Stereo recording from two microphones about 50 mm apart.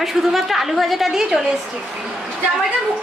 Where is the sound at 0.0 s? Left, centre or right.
Centre.